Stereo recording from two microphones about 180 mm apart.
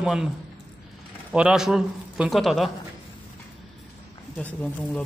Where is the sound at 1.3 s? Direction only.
5° right (ahead or behind).